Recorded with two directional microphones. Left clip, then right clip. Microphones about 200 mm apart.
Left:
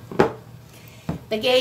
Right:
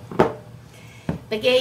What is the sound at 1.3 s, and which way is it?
Speech, 25° left (ahead or behind).